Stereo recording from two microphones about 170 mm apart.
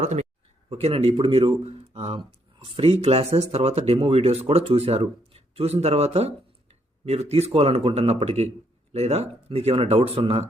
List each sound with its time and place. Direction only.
0.0 s speech: 45° right (ahead or behind)